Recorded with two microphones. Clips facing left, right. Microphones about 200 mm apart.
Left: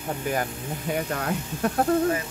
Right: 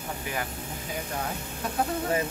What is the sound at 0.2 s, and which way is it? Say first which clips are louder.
Speech: left 7 dB; 45° left (ahead or behind).